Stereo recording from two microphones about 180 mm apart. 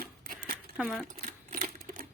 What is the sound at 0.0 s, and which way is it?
Crumpling, 50° right (ahead or behind).